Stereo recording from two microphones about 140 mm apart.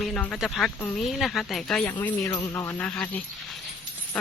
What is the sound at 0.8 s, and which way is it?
Speech, 10° left (ahead or behind).